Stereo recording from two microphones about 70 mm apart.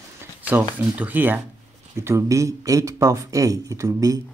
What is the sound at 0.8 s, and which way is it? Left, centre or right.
Speech, right.